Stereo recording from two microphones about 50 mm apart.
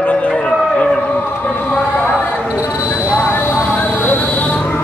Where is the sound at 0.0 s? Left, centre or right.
Left.